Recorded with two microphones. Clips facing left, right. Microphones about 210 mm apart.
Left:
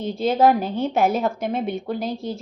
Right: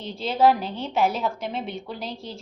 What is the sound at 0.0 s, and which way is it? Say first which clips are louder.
A woman's voice: left 3 dB; 50° left (ahead or behind).